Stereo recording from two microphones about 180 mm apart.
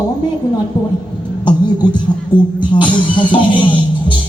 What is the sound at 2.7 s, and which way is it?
Music, 25° left (ahead or behind).